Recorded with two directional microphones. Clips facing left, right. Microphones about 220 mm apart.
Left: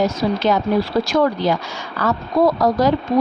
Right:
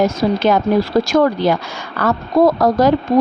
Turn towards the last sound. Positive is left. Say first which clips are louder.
# right 3 dB
turn(degrees=-45)  # may be behind; listen again after turning